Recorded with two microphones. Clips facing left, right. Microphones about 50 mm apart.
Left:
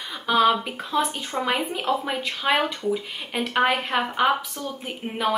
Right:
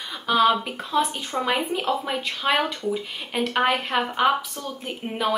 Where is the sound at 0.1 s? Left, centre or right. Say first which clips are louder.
Even; centre.